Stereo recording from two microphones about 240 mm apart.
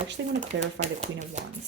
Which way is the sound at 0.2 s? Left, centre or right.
Right.